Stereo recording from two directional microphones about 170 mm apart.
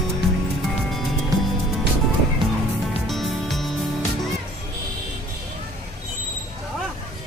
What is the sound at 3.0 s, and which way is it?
Music, centre (ahead or behind).